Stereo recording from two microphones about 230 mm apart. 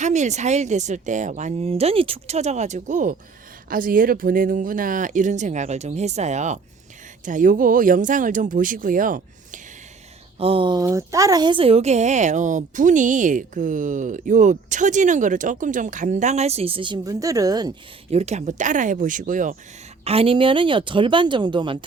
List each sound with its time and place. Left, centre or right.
0.0 s a woman's voice: right
10.3 s a woman's voice: right